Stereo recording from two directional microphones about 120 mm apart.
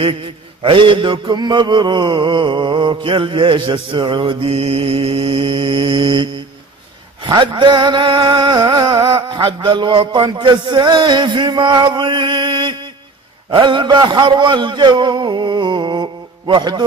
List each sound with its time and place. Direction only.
0.0 s mantra: 45° right (ahead or behind)
7.2 s music: 40° right (ahead or behind)
9.0 s a man's voice: 40° right (ahead or behind)